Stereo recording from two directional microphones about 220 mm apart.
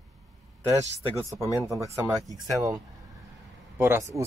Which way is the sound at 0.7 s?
15° right (ahead or behind).